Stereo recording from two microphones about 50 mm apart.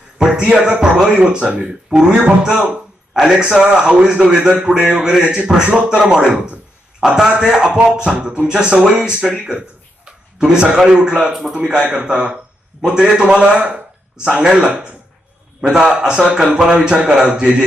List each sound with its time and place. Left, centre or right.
0.5 s a man's voice: centre